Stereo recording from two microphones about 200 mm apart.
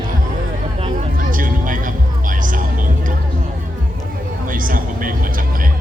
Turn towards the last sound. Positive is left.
turn(degrees=-45)  # may be behind; listen again after turning